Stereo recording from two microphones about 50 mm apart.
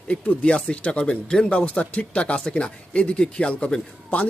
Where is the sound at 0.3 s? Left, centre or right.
Left.